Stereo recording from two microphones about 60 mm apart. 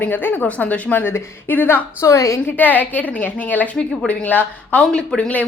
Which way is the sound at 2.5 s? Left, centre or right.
Left.